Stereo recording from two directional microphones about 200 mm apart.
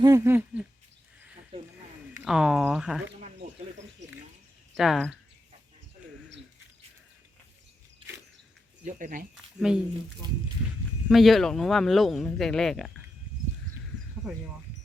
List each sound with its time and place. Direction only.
0.0 s speech: 15° right (ahead or behind)
2.1 s speech: 5° right (ahead or behind)
4.8 s speech: centre (ahead or behind)
8.8 s speech: 40° right (ahead or behind)
9.6 s speech: 5° right (ahead or behind)
10.2 s speech: 20° right (ahead or behind)
11.1 s speech: centre (ahead or behind)